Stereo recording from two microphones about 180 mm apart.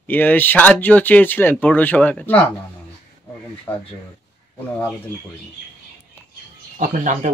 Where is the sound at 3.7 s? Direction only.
10° left (ahead or behind).